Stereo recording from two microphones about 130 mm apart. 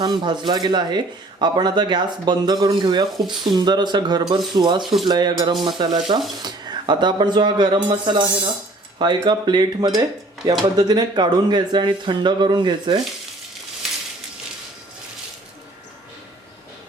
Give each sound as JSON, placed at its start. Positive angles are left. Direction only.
{"t": 0.0, "sound": "speech", "side_deg": -35}